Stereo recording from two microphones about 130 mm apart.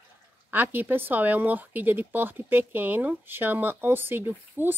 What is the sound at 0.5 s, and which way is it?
Speech, 15° right (ahead or behind).